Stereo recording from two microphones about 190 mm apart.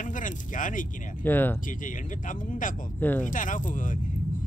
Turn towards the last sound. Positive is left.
turn(degrees=45)  # may be behind; listen again after turning